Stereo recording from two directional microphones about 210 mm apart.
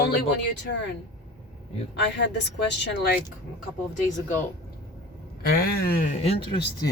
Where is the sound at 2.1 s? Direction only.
55° left (ahead or behind).